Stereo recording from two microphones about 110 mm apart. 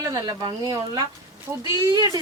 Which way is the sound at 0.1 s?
35° right (ahead or behind).